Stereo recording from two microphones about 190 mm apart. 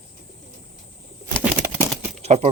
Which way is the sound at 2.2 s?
35° right (ahead or behind).